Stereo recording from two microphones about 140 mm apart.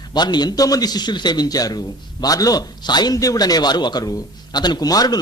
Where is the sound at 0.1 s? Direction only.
30° left (ahead or behind).